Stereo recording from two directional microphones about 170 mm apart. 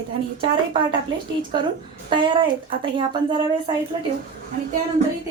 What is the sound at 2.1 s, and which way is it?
Speech, 30° right (ahead or behind).